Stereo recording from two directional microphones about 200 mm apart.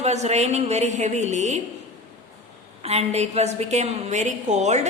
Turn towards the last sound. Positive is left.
turn(degrees=-35)  # may be behind; listen again after turning